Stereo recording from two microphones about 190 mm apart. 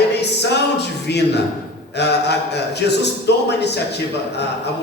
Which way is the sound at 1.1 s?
60° left (ahead or behind).